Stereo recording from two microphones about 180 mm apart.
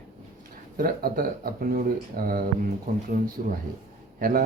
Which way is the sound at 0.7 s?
55° right (ahead or behind).